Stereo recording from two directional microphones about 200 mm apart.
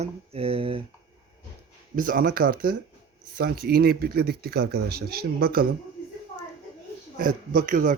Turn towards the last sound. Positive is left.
turn(degrees=-40)  # may be behind; listen again after turning